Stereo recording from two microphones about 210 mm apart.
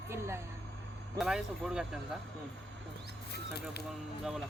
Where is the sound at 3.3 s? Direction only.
50° left (ahead or behind).